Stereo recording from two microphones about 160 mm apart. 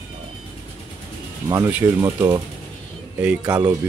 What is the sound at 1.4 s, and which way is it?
Speech, 15° right (ahead or behind).